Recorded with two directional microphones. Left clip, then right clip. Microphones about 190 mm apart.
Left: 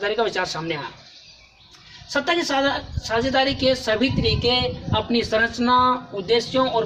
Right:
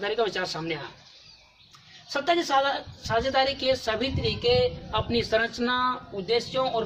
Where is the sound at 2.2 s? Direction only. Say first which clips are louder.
Left 1 dB; 15° right (ahead or behind).